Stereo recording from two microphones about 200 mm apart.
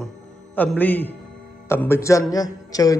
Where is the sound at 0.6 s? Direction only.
10° left (ahead or behind).